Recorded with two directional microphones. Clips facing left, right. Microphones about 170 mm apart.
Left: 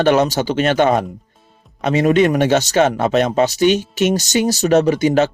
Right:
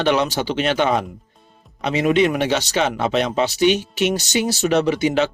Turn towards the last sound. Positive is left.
turn(degrees=45)  # may be behind; listen again after turning